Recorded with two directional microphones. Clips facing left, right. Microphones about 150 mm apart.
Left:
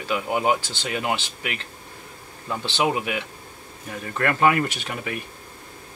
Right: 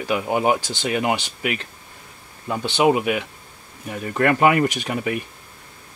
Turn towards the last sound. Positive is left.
turn(degrees=-15)  # may be behind; listen again after turning